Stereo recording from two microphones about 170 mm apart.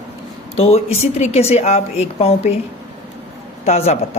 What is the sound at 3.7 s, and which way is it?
Speech, 40° left (ahead or behind).